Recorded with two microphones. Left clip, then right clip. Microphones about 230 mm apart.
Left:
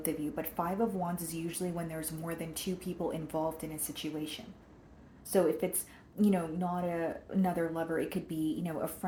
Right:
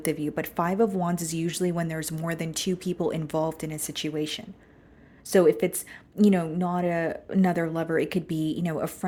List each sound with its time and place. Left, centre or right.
0.0 s speech: right